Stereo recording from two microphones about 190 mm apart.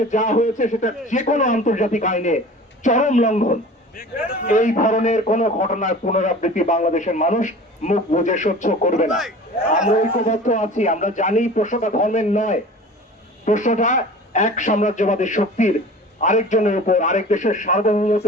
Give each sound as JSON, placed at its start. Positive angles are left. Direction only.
{"t": 0.1, "sound": "a man's voice", "side_deg": 40}